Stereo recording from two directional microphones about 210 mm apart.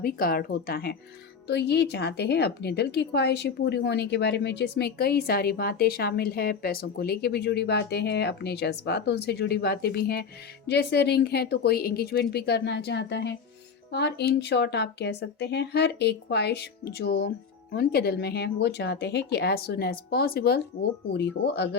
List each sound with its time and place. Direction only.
0.0 s a woman's voice: 45° left (ahead or behind)